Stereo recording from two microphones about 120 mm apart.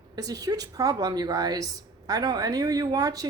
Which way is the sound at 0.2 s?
30° right (ahead or behind).